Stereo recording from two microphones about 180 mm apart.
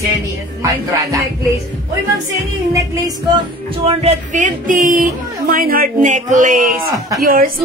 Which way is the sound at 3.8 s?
40° right (ahead or behind).